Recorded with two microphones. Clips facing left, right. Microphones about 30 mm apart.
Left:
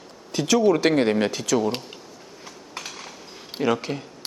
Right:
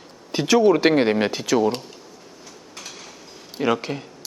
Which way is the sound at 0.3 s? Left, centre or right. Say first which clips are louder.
Right 3 dB; centre.